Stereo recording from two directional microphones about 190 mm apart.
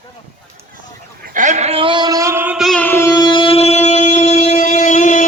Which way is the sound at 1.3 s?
40° right (ahead or behind).